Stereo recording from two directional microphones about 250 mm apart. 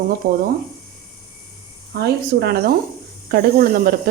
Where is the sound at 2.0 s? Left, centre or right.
Right.